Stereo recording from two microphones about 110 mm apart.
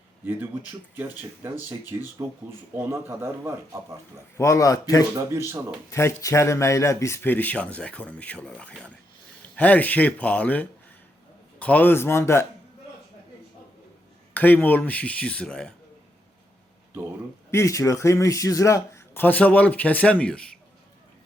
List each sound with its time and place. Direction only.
0.3 s speech: 15° right (ahead or behind)
4.4 s a man's voice: 25° left (ahead or behind)
5.1 s speech: 25° right (ahead or behind)
5.9 s speech: 25° left (ahead or behind)
14.3 s speech: 15° left (ahead or behind)
17.5 s speech: 25° left (ahead or behind); by 20.6 s 10° left (ahead or behind)